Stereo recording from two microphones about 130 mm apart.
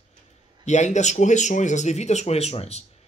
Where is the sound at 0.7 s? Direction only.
65° left (ahead or behind).